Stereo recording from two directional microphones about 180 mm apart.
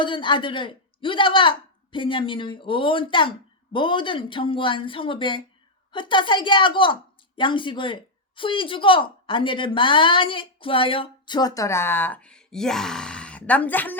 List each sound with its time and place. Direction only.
0.0 s a woman's voice: 25° left (ahead or behind); by 13.9 s 10° left (ahead or behind)